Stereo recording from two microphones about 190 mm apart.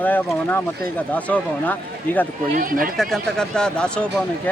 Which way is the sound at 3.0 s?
Centre (ahead or behind).